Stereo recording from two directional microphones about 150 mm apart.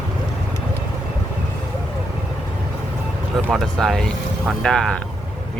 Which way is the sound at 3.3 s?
Centre (ahead or behind).